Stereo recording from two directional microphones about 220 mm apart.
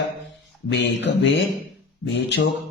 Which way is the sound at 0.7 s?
50° left (ahead or behind).